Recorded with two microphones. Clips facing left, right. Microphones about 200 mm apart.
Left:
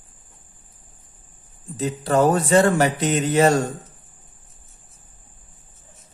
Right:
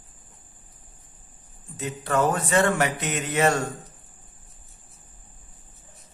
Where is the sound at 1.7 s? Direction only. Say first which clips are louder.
Left 5 dB; 35° left (ahead or behind).